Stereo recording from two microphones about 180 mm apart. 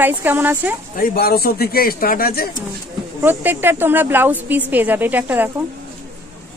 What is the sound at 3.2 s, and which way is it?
Speech, 10° right (ahead or behind).